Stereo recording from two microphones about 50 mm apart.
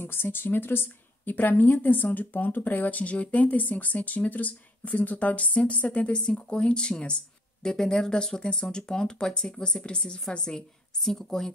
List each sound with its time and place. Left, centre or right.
0.0 s a woman's voice: left; by 11.5 s centre